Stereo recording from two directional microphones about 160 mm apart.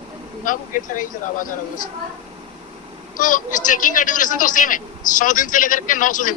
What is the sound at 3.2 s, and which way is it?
A man's voice, 55° left (ahead or behind).